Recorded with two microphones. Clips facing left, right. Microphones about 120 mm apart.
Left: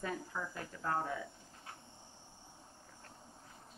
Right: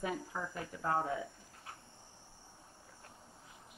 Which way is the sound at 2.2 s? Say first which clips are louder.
Left 1 dB; 15° left (ahead or behind).